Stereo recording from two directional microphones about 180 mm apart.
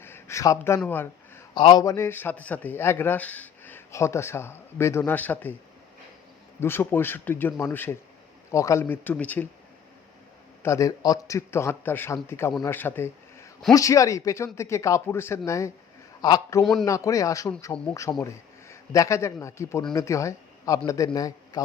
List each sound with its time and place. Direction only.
0.0 s a sound: 15° left (ahead or behind)
1.5 s a man's voice: 25° left (ahead or behind)
6.6 s a man's voice: 15° left (ahead or behind)
10.6 s a man's voice: 15° left (ahead or behind)